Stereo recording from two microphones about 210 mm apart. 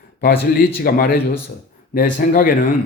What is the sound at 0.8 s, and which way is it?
Speech, 45° left (ahead or behind).